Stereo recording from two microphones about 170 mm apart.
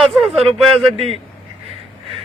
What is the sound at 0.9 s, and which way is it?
Speech, 35° right (ahead or behind).